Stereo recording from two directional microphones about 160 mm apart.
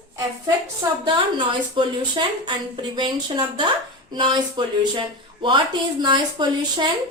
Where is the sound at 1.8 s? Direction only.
30° right (ahead or behind).